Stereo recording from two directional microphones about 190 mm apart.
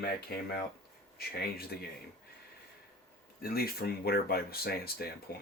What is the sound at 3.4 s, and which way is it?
Speech, 50° left (ahead or behind).